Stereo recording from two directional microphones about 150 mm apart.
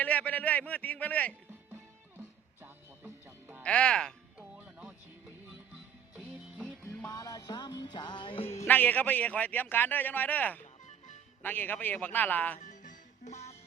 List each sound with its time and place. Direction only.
0.0 s a man's voice: 10° left (ahead or behind)
1.5 s music: 15° right (ahead or behind)
3.6 s a man's voice: 5° left (ahead or behind)
4.4 s music: 5° right (ahead or behind)
6.6 s music: 5° left (ahead or behind)
7.1 s music: 25° left (ahead or behind)
8.6 s a man's voice: 10° left (ahead or behind)
12.5 s music: 55° left (ahead or behind)